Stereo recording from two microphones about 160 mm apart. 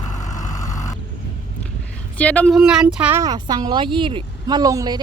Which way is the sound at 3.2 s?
25° right (ahead or behind).